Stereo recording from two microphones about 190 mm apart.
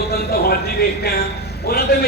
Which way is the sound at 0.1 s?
55° left (ahead or behind).